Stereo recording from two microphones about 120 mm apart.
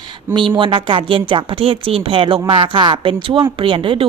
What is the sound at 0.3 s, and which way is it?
A woman's voice, 45° right (ahead or behind).